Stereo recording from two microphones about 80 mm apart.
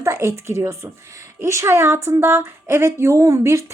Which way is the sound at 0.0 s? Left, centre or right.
Right.